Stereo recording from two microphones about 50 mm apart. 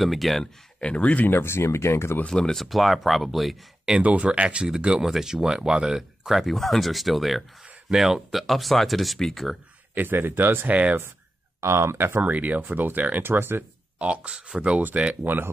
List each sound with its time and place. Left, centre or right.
0.0 s speech: centre
0.7 s speech: left
1.2 s speech: left
2.2 s speech: centre
2.6 s speech: centre
4.0 s speech: right; by 9.6 s centre
9.9 s speech: right
10.7 s speech: right
11.6 s speech: right
12.2 s speech: right
13.2 s speech: right
13.9 s speech: right
15.2 s speech: right